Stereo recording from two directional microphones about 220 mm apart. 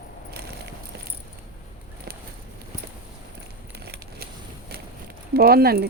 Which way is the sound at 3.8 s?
45° right (ahead or behind).